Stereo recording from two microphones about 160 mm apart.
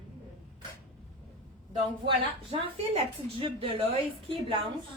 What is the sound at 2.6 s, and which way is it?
A woman's voice, 35° right (ahead or behind).